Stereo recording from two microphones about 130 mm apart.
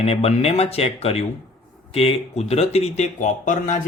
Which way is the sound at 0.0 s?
50° left (ahead or behind).